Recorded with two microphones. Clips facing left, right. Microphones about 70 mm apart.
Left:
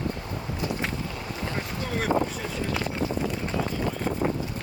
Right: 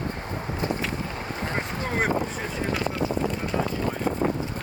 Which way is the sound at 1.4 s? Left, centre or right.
Right.